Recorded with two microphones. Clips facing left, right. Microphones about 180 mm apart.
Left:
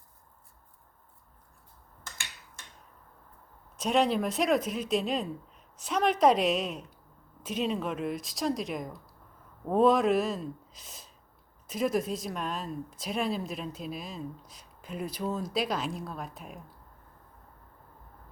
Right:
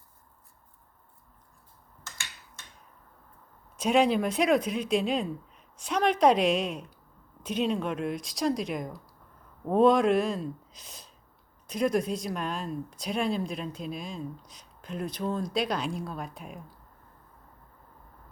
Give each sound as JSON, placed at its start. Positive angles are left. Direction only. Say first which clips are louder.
{"t": 3.8, "sound": "speech", "louder": "right 3 dB", "side_deg": 0}